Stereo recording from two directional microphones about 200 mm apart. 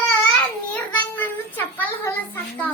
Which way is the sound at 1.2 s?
10° left (ahead or behind).